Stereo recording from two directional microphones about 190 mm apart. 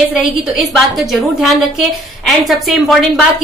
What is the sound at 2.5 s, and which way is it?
Speech, centre (ahead or behind).